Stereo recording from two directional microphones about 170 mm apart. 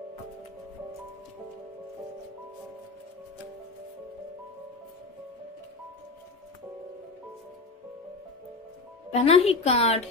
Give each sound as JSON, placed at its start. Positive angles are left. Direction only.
{"t": 9.1, "sound": "a woman's voice", "side_deg": 35}